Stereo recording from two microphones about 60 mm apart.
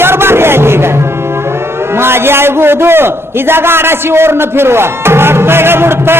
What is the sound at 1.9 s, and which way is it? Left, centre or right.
A man's voice, right.